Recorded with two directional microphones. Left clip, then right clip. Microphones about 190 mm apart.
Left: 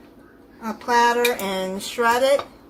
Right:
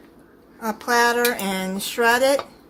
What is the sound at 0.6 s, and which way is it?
Speech, 55° right (ahead or behind).